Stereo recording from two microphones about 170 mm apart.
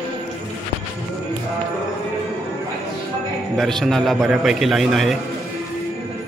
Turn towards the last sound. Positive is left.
turn(degrees=0)  # may be behind; listen again after turning